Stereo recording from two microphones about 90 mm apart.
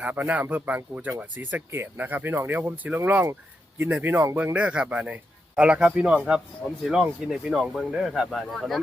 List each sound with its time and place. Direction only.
0.0 s speech: 15° right (ahead or behind)
4.5 s speech: 15° right (ahead or behind)